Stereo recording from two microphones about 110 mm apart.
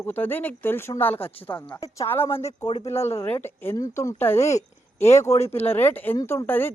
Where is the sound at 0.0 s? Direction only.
20° left (ahead or behind).